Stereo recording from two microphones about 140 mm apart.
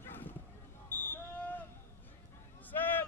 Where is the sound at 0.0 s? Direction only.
15° left (ahead or behind).